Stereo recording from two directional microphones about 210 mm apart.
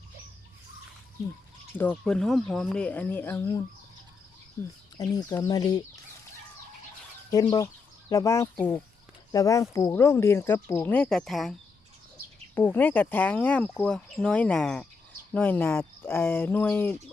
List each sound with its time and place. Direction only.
1.8 s speech: 5° left (ahead or behind)
7.3 s speech: 15° left (ahead or behind); by 11.5 s centre (ahead or behind)
12.5 s speech: 10° left (ahead or behind)